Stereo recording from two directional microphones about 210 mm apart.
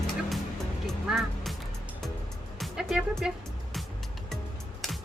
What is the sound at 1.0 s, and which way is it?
Music, centre (ahead or behind).